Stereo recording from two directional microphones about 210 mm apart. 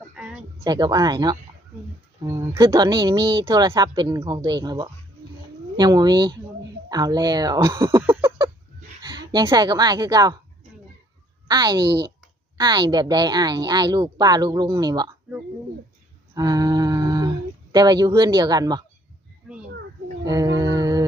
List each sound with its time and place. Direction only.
0.6 s speech: 20° right (ahead or behind)
7.9 s a sound: 10° right (ahead or behind)
9.3 s speech: 20° right (ahead or behind)
11.4 s a woman's voice: 20° right (ahead or behind)
11.8 s speech: 50° right (ahead or behind)
12.5 s speech: 20° right (ahead or behind)
16.3 s speech: 15° right (ahead or behind)
20.2 s humming: 15° right (ahead or behind)